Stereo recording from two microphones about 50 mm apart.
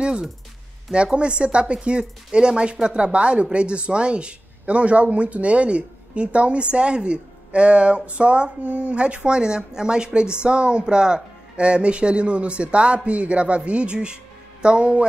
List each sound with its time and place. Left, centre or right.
0.0 s music: centre
0.9 s speech: right